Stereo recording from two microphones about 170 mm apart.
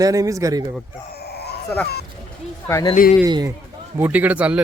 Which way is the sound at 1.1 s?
70° left (ahead or behind).